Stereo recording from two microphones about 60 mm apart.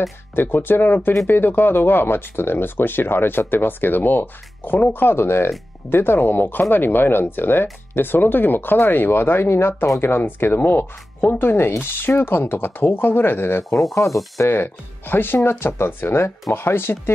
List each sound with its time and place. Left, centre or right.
0.4 s speech: left
14.0 s speech: left
14.5 s speech: left